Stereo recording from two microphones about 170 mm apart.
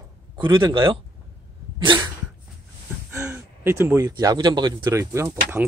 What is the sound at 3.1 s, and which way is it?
Speech, 15° right (ahead or behind).